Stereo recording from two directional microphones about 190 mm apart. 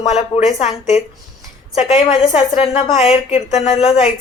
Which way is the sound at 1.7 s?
35° left (ahead or behind).